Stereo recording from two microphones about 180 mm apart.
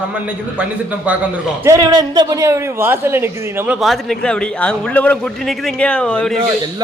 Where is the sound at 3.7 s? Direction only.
Centre (ahead or behind).